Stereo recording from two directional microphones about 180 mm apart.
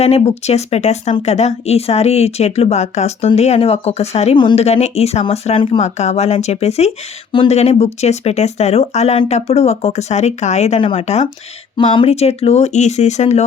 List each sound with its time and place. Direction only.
0.0 s speech: 35° left (ahead or behind)